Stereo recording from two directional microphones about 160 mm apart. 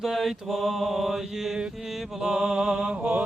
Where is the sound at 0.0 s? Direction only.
Centre (ahead or behind).